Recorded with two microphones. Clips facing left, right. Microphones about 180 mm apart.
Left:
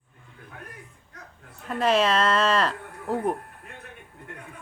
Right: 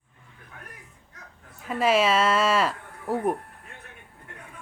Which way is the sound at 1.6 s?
5° right (ahead or behind).